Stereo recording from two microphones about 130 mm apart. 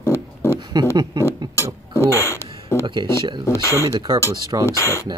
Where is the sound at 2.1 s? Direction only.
20° left (ahead or behind).